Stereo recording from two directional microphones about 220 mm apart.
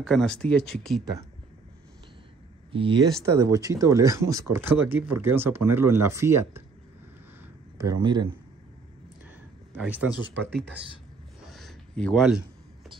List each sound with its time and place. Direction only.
0.0 s speech: 5° left (ahead or behind)
2.7 s speech: 20° right (ahead or behind)
7.7 s speech: 15° right (ahead or behind)
9.7 s speech: 5° right (ahead or behind)
11.5 s a sound: centre (ahead or behind)